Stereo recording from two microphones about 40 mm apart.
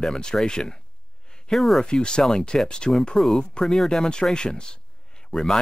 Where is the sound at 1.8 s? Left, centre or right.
Left.